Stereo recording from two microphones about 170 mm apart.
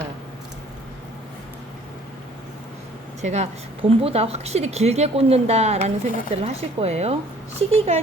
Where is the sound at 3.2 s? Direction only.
40° right (ahead or behind).